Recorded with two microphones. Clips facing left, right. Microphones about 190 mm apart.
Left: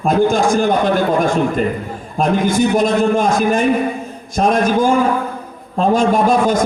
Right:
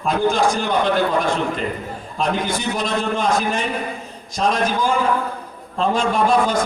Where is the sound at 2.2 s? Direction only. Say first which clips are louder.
Left 8 dB; 50° left (ahead or behind).